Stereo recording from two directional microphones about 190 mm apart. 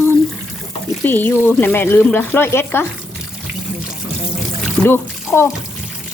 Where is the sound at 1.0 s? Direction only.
10° left (ahead or behind).